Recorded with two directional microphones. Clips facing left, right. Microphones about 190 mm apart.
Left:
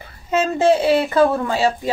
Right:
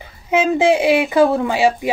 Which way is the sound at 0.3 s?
10° right (ahead or behind).